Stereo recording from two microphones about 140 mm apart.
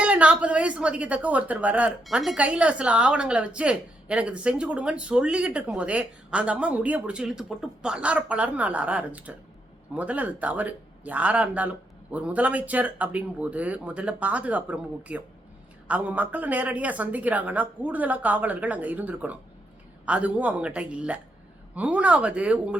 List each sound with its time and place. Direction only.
0.0 s a woman's voice: 10° right (ahead or behind)